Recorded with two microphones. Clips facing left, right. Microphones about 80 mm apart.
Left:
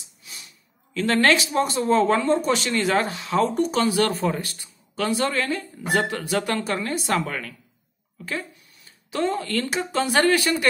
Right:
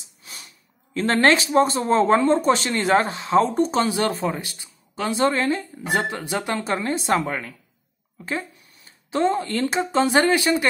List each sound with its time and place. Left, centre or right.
0.2 s snort: right
0.9 s speech: right
9.1 s speech: right